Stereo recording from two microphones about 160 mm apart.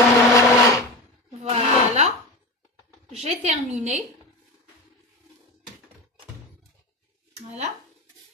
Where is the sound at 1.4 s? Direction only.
45° right (ahead or behind).